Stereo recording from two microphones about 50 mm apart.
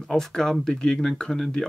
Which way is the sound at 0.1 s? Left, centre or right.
Centre.